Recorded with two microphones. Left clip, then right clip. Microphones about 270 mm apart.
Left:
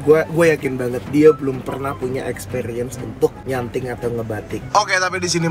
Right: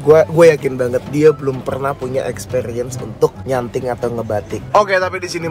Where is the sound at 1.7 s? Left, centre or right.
Centre.